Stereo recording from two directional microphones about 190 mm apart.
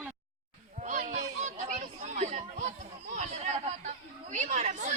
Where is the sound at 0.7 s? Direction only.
40° right (ahead or behind).